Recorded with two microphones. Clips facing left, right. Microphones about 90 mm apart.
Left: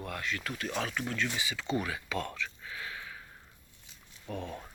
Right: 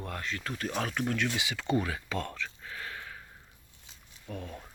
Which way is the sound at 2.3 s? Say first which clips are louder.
Even; 40° right (ahead or behind).